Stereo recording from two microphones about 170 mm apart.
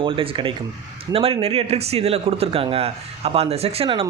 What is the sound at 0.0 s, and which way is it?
Speech, 30° right (ahead or behind).